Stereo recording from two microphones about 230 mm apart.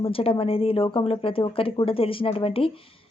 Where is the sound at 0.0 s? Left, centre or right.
Left.